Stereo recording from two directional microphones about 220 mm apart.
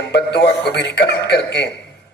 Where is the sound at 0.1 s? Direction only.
50° left (ahead or behind).